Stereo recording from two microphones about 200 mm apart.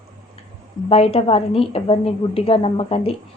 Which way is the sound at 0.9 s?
30° left (ahead or behind).